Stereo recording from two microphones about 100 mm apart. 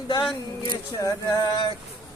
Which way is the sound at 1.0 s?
40° left (ahead or behind).